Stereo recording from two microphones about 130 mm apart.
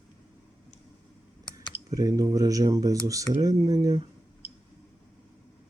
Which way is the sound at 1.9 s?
25° right (ahead or behind).